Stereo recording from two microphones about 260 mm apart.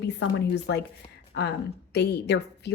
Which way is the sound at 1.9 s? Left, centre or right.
Left.